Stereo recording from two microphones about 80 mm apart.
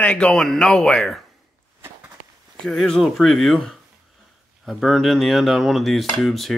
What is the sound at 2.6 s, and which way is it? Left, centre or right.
Speech, centre.